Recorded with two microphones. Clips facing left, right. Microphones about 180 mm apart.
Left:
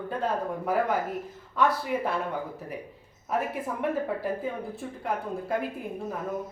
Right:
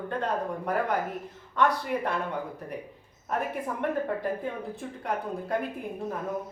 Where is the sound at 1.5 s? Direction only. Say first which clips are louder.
Even; 5° left (ahead or behind).